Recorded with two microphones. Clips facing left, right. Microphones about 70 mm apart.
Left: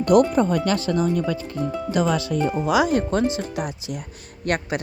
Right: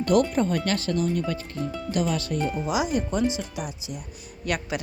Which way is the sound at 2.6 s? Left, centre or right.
Left.